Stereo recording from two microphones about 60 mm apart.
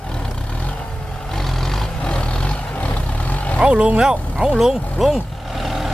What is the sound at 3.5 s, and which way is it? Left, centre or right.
Speech, centre.